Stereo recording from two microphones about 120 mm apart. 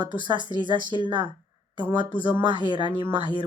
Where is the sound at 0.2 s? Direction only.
40° right (ahead or behind).